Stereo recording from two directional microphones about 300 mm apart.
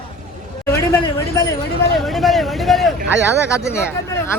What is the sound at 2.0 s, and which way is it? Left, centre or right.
Speech, centre.